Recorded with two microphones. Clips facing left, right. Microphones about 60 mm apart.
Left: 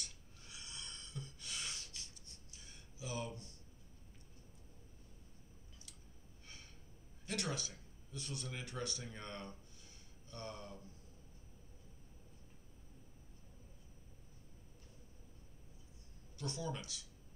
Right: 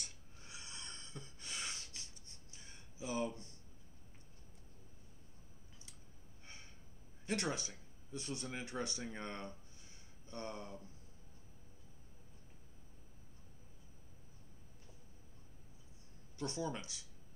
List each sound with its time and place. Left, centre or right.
0.4 s snort: right
6.4 s a sound: right
7.2 s speech: right
16.3 s speech: right